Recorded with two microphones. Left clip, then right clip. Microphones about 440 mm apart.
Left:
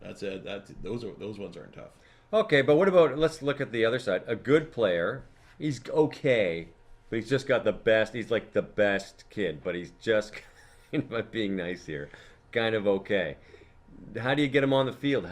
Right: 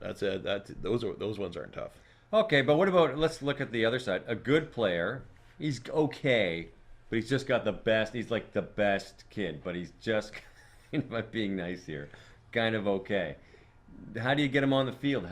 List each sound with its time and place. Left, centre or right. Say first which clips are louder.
0.2 s speech: right 4 dB; right
2.3 s speech: left 2 dB; centre